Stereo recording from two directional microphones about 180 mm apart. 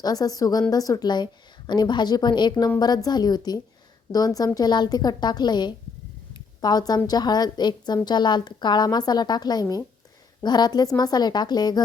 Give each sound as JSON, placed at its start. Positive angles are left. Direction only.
{"t": 0.0, "sound": "a woman's voice", "side_deg": 20}